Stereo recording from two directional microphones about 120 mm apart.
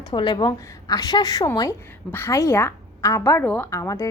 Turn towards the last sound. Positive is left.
turn(degrees=25)  # may be behind; listen again after turning